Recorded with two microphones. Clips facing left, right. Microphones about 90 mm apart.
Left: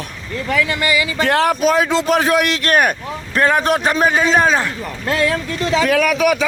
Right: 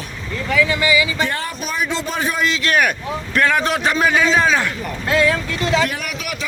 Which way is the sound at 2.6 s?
45° left (ahead or behind).